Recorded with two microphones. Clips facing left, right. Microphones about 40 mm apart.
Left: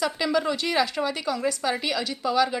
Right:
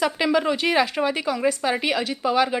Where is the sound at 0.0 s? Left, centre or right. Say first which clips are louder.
Right 3 dB; right.